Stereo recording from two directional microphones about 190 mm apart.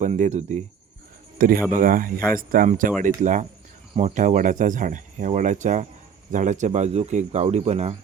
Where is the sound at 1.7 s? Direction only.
45° right (ahead or behind).